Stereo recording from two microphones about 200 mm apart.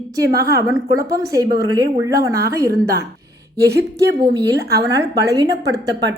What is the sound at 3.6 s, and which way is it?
A woman's voice, 55° right (ahead or behind).